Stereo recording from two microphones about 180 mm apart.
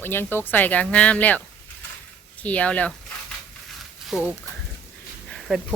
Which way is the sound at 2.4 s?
5° left (ahead or behind).